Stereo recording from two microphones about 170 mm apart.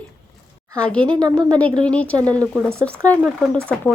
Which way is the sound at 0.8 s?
5° left (ahead or behind).